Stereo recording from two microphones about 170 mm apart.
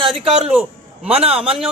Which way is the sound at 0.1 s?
5° right (ahead or behind).